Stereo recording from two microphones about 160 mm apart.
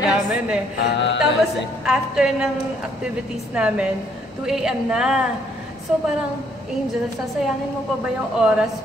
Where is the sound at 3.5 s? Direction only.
5° right (ahead or behind).